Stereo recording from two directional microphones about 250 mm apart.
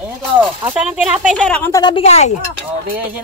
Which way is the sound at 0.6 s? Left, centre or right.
Centre.